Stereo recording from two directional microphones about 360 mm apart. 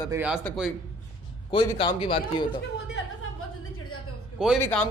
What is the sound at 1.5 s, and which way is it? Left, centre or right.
A man's voice, centre.